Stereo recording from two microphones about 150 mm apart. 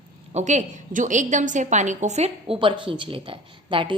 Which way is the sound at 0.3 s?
50° right (ahead or behind).